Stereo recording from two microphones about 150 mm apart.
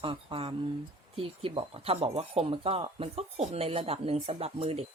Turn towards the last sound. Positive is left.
turn(degrees=-45)  # may be behind; listen again after turning